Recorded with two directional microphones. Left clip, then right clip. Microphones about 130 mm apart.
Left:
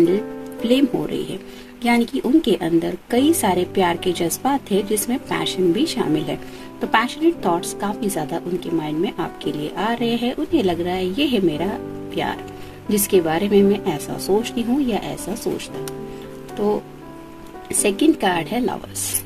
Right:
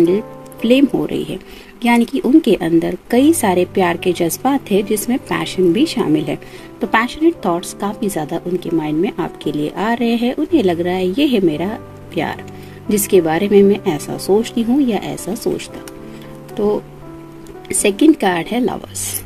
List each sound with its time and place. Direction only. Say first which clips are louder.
0.1 s speech: right 3 dB; 35° right (ahead or behind)
12.8 s speech: right 4 dB; 40° right (ahead or behind)
17.6 s speech: right 5 dB; 40° right (ahead or behind)